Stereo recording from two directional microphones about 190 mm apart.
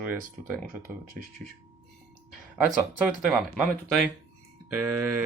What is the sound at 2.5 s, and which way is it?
Speech, 5° right (ahead or behind).